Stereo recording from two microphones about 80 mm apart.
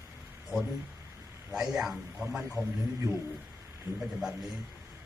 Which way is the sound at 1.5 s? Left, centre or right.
Centre.